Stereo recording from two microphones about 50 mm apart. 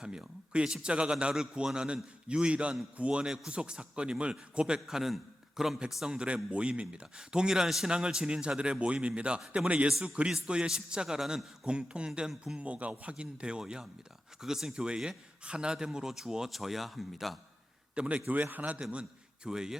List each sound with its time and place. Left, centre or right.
0.0 s a man's voice: centre
3.2 s speech: centre
6.1 s a man's voice: right
10.2 s a man's voice: centre
17.9 s a man's voice: right
19.5 s speech: centre